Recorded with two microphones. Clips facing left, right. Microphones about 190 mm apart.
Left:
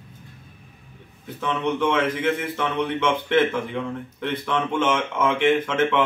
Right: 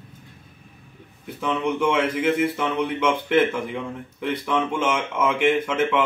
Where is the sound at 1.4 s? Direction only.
10° right (ahead or behind).